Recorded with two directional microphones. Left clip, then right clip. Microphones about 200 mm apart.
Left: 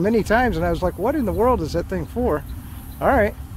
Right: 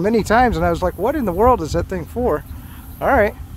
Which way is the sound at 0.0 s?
20° right (ahead or behind).